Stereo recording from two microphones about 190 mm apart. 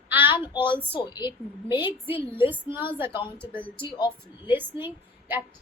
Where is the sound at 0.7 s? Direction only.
10° left (ahead or behind).